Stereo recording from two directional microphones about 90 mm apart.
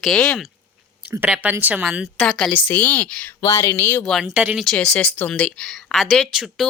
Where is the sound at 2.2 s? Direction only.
10° left (ahead or behind).